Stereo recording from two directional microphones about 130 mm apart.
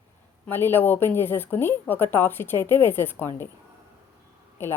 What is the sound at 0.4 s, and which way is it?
Speech, 15° left (ahead or behind).